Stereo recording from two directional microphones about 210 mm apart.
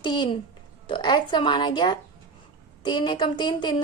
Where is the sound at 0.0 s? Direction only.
20° left (ahead or behind).